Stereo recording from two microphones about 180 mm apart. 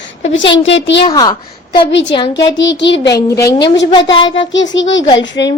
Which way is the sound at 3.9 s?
25° left (ahead or behind).